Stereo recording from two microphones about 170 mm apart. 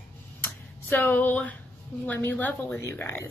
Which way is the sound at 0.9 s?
10° left (ahead or behind).